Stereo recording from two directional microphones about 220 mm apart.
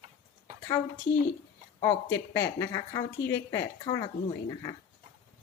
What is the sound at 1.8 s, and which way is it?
Speech, 15° left (ahead or behind).